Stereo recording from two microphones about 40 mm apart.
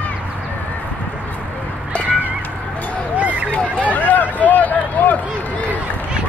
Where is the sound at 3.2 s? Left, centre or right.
Right.